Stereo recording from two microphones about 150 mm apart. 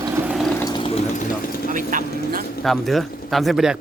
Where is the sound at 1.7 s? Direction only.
65° right (ahead or behind).